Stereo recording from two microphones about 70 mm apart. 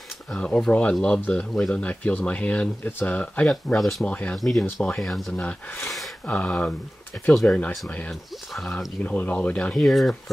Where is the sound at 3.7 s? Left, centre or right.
Centre.